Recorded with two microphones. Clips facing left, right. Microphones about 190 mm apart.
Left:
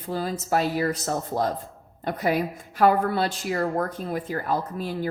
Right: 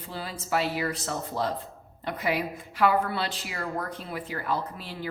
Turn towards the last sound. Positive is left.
turn(degrees=45)  # may be behind; listen again after turning